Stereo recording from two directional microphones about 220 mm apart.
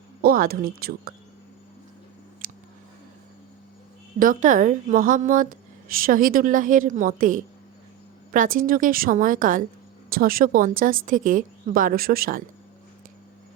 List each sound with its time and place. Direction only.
0.2 s speech: 40° right (ahead or behind)
2.4 s a sound: 40° right (ahead or behind)
4.2 s a woman's voice: 35° right (ahead or behind)